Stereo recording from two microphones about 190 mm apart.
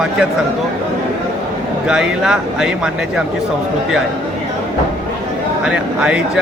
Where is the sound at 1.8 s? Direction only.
5° right (ahead or behind).